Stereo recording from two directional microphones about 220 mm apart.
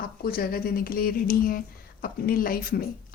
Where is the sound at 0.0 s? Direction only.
40° left (ahead or behind).